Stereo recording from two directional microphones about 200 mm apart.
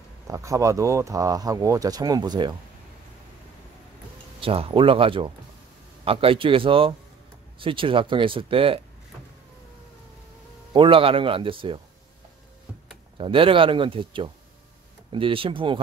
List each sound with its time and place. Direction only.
0.3 s speech: 15° right (ahead or behind)
4.4 s speech: 25° right (ahead or behind)
10.7 s speech: 25° right (ahead or behind)
13.2 s speech: 25° right (ahead or behind)